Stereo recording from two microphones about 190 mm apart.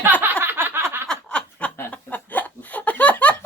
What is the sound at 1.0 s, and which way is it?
Snicker, 5° left (ahead or behind).